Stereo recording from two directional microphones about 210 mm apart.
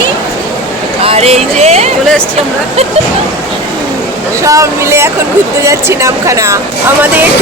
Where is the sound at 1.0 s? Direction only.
30° right (ahead or behind).